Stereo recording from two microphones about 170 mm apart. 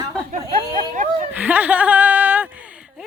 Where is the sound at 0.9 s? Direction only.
50° right (ahead or behind).